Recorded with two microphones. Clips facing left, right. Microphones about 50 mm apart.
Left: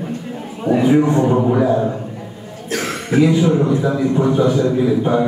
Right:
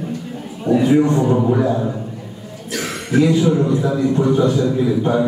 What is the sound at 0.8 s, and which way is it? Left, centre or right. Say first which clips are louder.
Speech: left 1 dB; centre.